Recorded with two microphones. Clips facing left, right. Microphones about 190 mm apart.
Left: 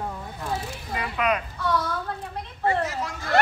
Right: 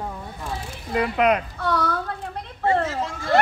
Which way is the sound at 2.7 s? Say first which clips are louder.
Right 4 dB; 25° right (ahead or behind).